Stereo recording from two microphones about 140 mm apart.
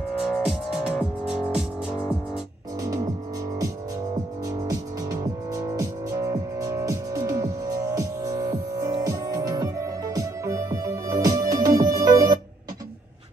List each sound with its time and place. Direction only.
0.3 s music: 5° right (ahead or behind)
5.5 s music: 25° right (ahead or behind)